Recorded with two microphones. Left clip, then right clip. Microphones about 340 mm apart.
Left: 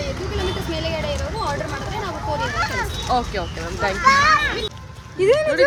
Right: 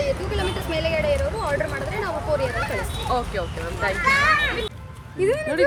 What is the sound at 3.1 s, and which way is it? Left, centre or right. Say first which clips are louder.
Speech: left 2 dB; centre.